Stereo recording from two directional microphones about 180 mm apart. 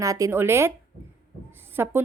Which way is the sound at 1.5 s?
10° right (ahead or behind).